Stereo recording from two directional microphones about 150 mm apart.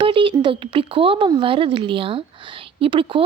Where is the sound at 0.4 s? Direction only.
35° right (ahead or behind).